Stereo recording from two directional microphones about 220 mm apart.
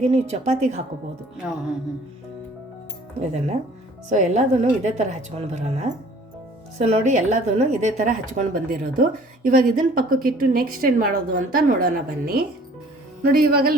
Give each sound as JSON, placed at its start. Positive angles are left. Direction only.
{"t": 0.0, "sound": "a woman's voice", "side_deg": -30}
{"t": 3.2, "sound": "a woman's voice", "side_deg": -30}